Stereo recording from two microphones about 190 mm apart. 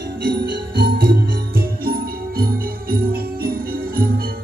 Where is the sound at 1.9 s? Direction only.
50° right (ahead or behind).